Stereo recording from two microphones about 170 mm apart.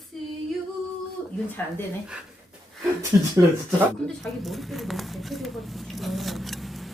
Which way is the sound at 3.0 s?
20° right (ahead or behind).